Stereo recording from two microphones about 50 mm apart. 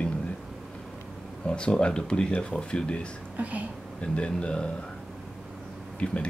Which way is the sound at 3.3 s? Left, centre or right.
Right.